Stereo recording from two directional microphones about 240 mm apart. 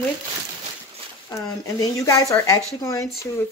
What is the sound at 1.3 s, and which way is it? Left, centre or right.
Speech, centre.